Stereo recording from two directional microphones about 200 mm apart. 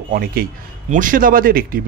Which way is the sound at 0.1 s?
45° right (ahead or behind).